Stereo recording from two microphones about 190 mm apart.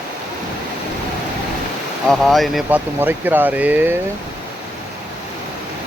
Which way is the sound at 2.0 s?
Centre (ahead or behind).